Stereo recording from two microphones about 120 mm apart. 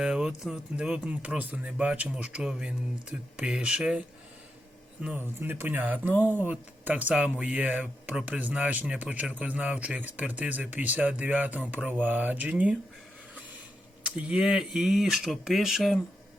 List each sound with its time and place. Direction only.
0.0 s speech: 5° right (ahead or behind)
5.0 s speech: 15° right (ahead or behind)
14.0 s speech: 5° right (ahead or behind)